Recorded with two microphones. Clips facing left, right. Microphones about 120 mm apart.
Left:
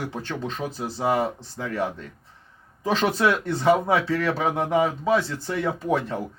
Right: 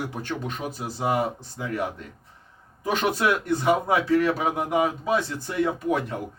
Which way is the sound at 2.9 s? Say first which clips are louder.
Left 2 dB; 15° right (ahead or behind).